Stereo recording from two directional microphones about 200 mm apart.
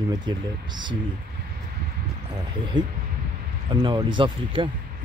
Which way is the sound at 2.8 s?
70° right (ahead or behind).